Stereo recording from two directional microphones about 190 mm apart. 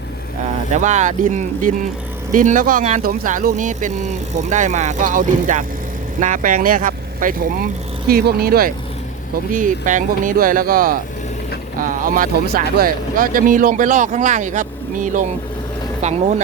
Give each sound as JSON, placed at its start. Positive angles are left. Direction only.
{"t": 0.7, "sound": "speech", "side_deg": -40}